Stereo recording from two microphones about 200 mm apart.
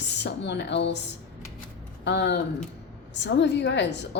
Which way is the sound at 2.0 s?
60° left (ahead or behind).